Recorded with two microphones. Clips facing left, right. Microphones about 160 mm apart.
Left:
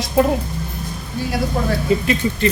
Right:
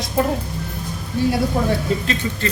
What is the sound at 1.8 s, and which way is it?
Speech, 10° left (ahead or behind).